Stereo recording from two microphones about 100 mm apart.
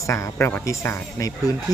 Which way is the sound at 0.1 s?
25° left (ahead or behind).